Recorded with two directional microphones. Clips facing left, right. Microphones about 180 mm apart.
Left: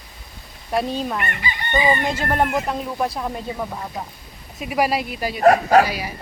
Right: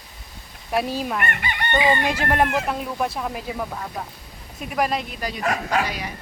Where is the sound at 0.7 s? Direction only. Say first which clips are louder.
Left 1 dB; 5° right (ahead or behind).